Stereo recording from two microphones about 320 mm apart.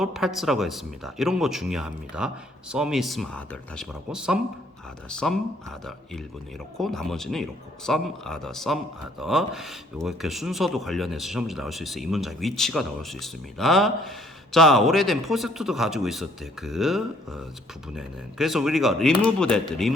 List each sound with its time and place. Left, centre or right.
0.0 s speech: centre
6.7 s speech: centre